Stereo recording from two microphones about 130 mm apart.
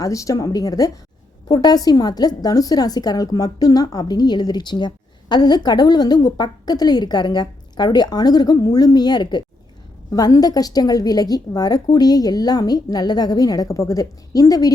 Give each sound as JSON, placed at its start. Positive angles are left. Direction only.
{"t": 0.0, "sound": "a woman's voice", "side_deg": 25}